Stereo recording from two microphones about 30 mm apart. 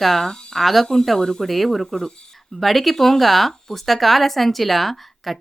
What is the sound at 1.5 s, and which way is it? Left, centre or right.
Speech, centre.